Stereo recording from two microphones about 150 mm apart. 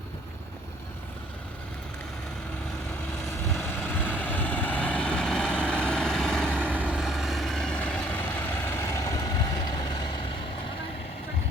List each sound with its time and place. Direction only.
3.6 s vehicle: 15° left (ahead or behind)
6.7 s vehicle: 5° right (ahead or behind); by 8.2 s 10° left (ahead or behind)
8.7 s vehicle: 20° left (ahead or behind)